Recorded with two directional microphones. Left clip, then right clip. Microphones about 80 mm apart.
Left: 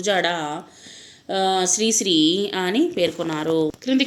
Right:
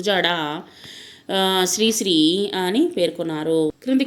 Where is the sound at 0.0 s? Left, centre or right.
Right.